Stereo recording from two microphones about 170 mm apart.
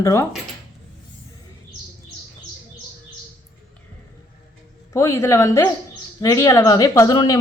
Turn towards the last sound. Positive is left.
turn(degrees=20)  # may be behind; listen again after turning